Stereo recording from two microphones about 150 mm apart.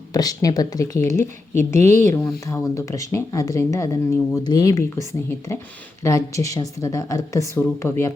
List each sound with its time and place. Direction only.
0.1 s a woman's voice: 25° left (ahead or behind)
1.5 s a woman's voice: 50° right (ahead or behind)
2.5 s a woman's voice: 20° left (ahead or behind)